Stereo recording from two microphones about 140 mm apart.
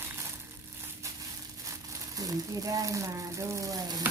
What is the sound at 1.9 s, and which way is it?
Speech, 25° right (ahead or behind).